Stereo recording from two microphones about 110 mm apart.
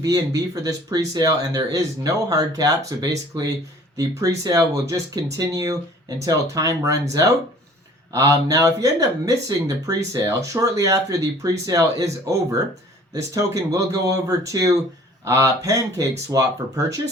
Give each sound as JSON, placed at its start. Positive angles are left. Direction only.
{"t": 0.0, "sound": "speech", "side_deg": -30}
{"t": 8.1, "sound": "speech", "side_deg": -30}